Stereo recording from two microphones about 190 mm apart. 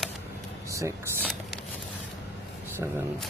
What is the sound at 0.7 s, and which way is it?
Vehicle, 15° right (ahead or behind).